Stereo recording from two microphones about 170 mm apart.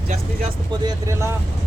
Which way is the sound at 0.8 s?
15° right (ahead or behind).